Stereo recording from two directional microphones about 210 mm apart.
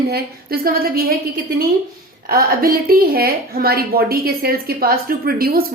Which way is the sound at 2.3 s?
45° right (ahead or behind).